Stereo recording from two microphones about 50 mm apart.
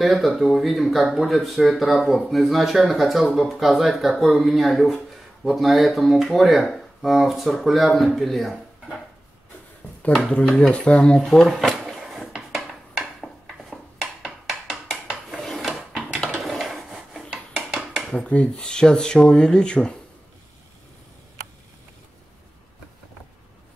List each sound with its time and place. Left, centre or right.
0.0 s speech: centre
10.3 s speech: centre
11.2 s drawer open or close: centre
12.0 s dishes: centre
12.6 s a sound: centre
15.4 s filing: centre
16.0 s a sound: centre
16.4 s dishes: centre
18.2 s speech: left